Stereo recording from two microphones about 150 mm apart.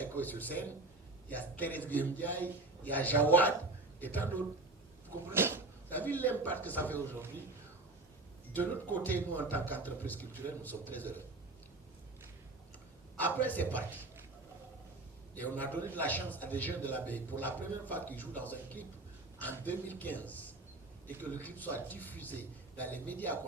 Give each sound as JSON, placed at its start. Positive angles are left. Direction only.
{"t": 0.0, "sound": "a man's voice", "side_deg": 10}
{"t": 5.3, "sound": "speech", "side_deg": -15}
{"t": 5.9, "sound": "a man's voice", "side_deg": 10}
{"t": 8.5, "sound": "a man's voice", "side_deg": 10}
{"t": 13.1, "sound": "a man's voice", "side_deg": 10}
{"t": 15.4, "sound": "a man's voice", "side_deg": 10}
{"t": 21.4, "sound": "a man's voice", "side_deg": 10}